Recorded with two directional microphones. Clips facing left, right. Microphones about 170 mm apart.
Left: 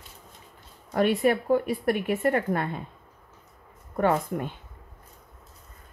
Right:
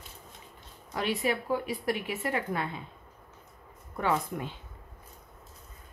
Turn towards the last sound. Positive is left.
turn(degrees=50)  # may be behind; listen again after turning